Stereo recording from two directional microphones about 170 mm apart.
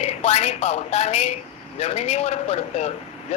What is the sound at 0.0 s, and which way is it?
Speech, 35° left (ahead or behind).